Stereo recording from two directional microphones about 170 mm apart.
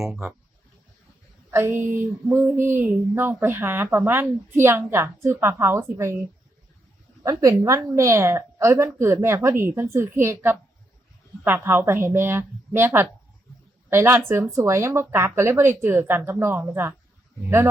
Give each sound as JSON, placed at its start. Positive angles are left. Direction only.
{"t": 0.0, "sound": "speech", "side_deg": -10}
{"t": 1.5, "sound": "speech", "side_deg": -15}
{"t": 7.2, "sound": "speech", "side_deg": -20}